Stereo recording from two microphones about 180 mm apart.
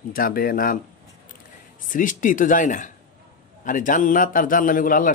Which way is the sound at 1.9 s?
45° left (ahead or behind).